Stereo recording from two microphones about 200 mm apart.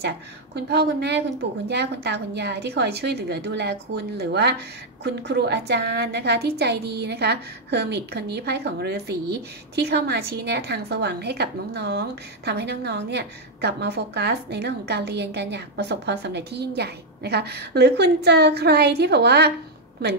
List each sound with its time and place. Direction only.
0.7 s a woman's voice: 55° right (ahead or behind)